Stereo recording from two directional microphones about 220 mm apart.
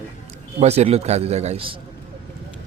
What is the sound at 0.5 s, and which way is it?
A man's voice, 30° right (ahead or behind).